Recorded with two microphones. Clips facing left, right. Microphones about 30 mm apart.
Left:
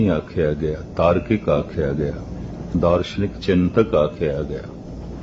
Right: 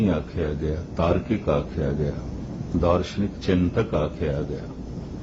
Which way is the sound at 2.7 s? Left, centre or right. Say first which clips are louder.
Left 4 dB; centre.